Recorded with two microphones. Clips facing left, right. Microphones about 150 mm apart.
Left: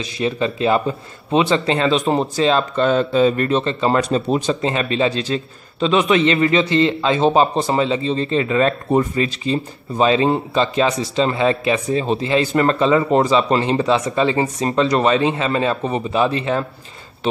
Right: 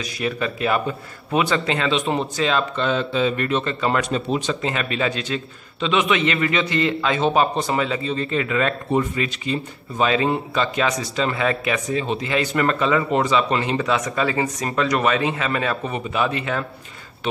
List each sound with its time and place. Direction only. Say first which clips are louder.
0.0 s speech: left 4 dB; 25° left (ahead or behind)